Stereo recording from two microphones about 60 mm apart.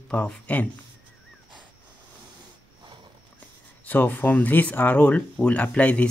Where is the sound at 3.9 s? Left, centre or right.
Left.